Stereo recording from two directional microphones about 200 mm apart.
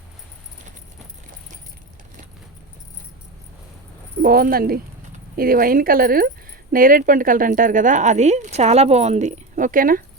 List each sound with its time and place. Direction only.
4.2 s speech: 45° right (ahead or behind)